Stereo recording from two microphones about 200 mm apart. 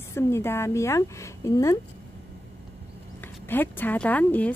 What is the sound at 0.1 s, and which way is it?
Speech, 10° left (ahead or behind).